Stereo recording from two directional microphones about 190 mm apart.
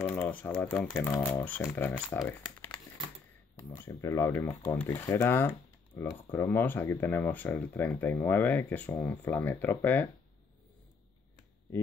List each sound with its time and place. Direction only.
0.0 s speech: 10° left (ahead or behind)
3.7 s speech: 15° left (ahead or behind)